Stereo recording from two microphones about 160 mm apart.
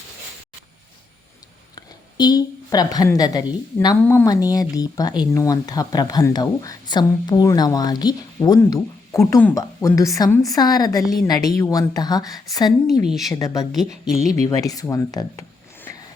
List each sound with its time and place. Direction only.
1.7 s a woman's voice: 25° left (ahead or behind)
13.1 s a woman's voice: centre (ahead or behind)
13.3 s speech: 20° left (ahead or behind)
13.7 s a woman's voice: centre (ahead or behind)
14.4 s speech: 20° left (ahead or behind)